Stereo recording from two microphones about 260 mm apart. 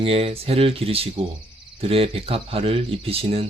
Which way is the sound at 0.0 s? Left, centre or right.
Right.